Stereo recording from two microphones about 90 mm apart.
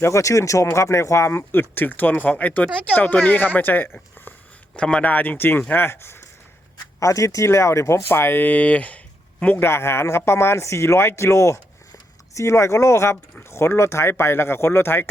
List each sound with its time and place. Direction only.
0.0 s a man's voice: 35° left (ahead or behind); by 9.6 s 15° left (ahead or behind)
9.6 s speech: 30° left (ahead or behind)